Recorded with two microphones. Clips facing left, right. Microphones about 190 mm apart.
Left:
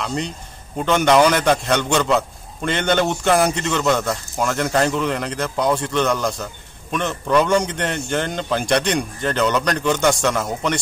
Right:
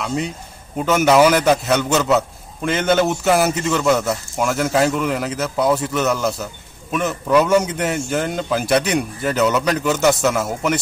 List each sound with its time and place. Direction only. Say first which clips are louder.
0.0 s a man's voice: right 2 dB; 5° right (ahead or behind)